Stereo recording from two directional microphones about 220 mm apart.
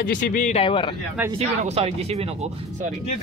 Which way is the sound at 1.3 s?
30° right (ahead or behind).